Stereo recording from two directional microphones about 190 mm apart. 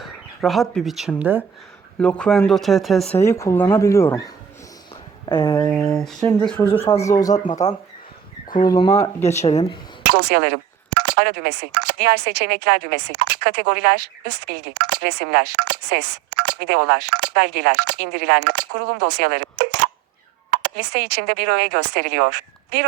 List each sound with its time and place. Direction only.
0.0 s speech: centre (ahead or behind)
2.0 s speech: 5° left (ahead or behind)
3.2 s speech: 15° left (ahead or behind)
5.9 s speech: centre (ahead or behind)
6.6 s speech: 10° left (ahead or behind)
7.5 s speech: 35° left (ahead or behind)
8.6 s speech: 20° left (ahead or behind)
9.3 s speech: 35° left (ahead or behind)
10.1 s speech: 60° right (ahead or behind)